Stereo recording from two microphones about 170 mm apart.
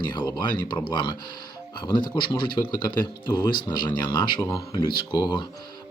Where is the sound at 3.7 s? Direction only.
25° left (ahead or behind).